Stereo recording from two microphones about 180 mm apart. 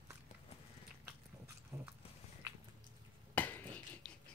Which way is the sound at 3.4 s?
10° left (ahead or behind).